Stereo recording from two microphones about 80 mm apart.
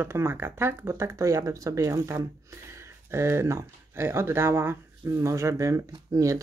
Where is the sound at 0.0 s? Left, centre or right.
Right.